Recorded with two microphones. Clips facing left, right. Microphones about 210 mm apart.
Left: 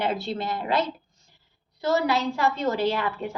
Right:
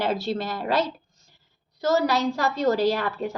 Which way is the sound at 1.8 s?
40° right (ahead or behind).